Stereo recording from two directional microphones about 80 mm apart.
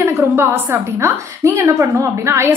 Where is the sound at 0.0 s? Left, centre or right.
Right.